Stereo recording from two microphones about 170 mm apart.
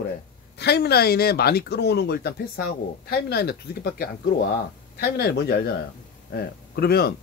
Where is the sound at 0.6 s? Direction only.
75° left (ahead or behind).